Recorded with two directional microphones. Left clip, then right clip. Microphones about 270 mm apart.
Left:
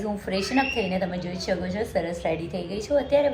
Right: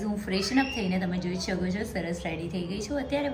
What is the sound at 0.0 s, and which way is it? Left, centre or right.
A woman's voice, centre.